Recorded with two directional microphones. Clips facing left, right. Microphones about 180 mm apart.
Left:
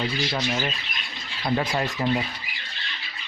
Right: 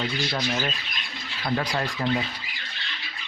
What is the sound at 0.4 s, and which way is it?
Speech, 10° left (ahead or behind).